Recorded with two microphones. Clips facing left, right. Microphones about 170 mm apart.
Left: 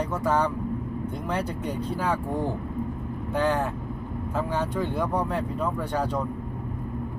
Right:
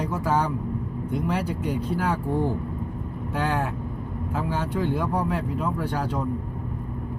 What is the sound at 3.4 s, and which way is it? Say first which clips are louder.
Speech: left 2 dB; 5° right (ahead or behind).